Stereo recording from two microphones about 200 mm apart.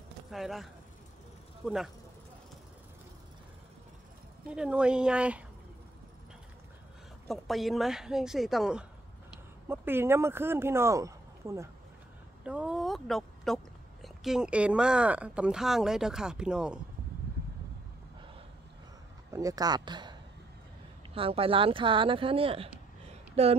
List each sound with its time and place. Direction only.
0.3 s speech: centre (ahead or behind)
4.5 s speech: 5° right (ahead or behind)
7.2 s speech: centre (ahead or behind)
12.4 s a sound: 5° right (ahead or behind)
14.0 s speech: centre (ahead or behind)
19.3 s speech: 15° right (ahead or behind)